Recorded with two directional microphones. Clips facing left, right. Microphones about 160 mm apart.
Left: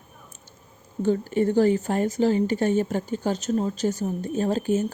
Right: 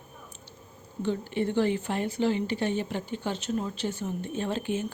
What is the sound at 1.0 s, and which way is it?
A woman's voice, 45° left (ahead or behind).